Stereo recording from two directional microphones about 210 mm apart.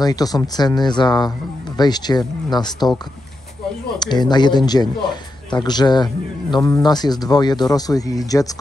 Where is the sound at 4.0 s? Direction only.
20° left (ahead or behind).